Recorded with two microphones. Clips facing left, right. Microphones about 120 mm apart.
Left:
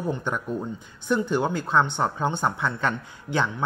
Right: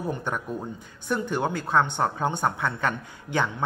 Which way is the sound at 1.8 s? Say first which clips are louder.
Even; 15° right (ahead or behind).